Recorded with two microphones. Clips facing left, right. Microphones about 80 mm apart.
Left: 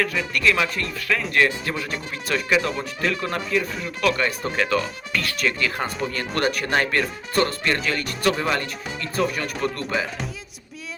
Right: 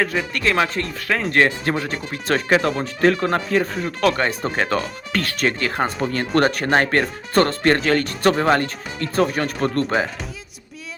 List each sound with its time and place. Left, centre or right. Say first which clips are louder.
0.0 s speech: right 1 dB; right